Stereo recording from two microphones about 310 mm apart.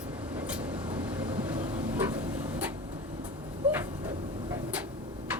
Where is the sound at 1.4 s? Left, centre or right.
Centre.